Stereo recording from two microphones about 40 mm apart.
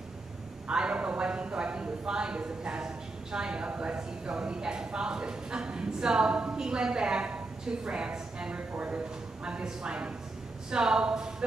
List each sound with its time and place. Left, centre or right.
0.7 s speech: right